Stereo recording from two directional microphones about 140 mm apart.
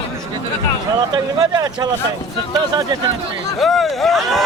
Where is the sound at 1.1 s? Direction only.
30° right (ahead or behind).